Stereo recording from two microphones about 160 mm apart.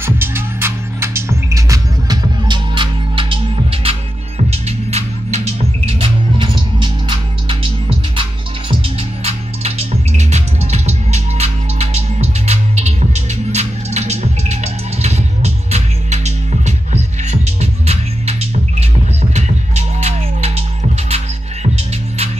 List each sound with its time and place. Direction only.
0.0 s music: 15° right (ahead or behind); by 20.6 s 40° right (ahead or behind)